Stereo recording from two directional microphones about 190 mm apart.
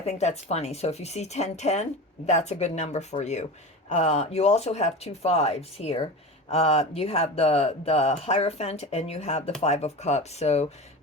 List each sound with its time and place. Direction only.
0.0 s speech: 35° left (ahead or behind)